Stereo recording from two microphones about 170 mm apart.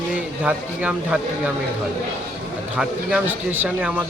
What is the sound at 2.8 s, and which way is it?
A man's voice, 5° right (ahead or behind).